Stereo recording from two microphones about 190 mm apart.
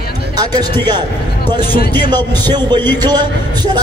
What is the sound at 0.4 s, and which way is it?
Speech, 20° right (ahead or behind).